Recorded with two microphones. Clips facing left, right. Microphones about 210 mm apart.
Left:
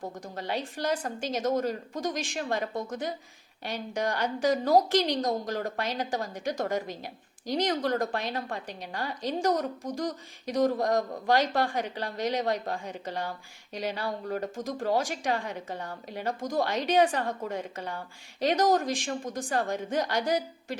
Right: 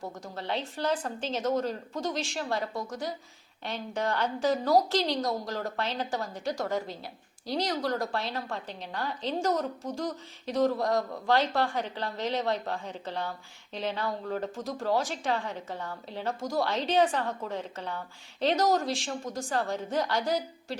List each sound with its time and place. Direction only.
0.3 s a woman's voice: 10° left (ahead or behind)